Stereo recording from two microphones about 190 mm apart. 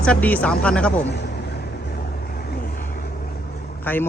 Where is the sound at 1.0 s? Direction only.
60° left (ahead or behind).